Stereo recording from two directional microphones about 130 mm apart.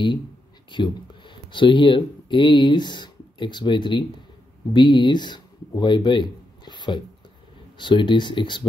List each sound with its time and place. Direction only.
0.7 s speech: 35° left (ahead or behind)